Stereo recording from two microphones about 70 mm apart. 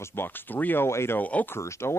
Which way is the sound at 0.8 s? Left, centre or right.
Left.